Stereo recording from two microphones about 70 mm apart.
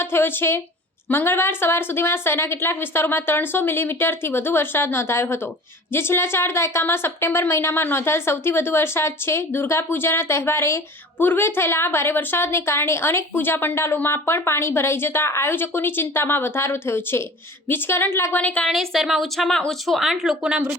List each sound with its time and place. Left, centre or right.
0.0 s a woman's voice: left
18.3 s a woman's voice: left
18.7 s a woman's voice: centre
20.0 s speech: centre